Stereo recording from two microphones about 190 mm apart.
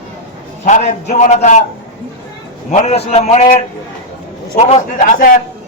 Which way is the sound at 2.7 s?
35° left (ahead or behind).